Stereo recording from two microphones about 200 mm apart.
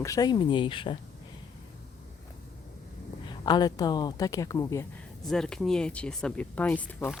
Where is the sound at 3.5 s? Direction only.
20° left (ahead or behind).